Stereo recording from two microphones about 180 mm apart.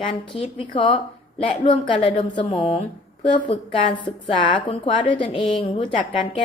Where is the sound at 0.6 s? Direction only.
25° left (ahead or behind).